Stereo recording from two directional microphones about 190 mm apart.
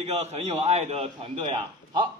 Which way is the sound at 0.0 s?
35° right (ahead or behind).